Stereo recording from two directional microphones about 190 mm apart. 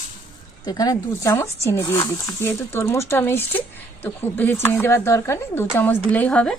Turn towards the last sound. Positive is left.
turn(degrees=5)  # may be behind; listen again after turning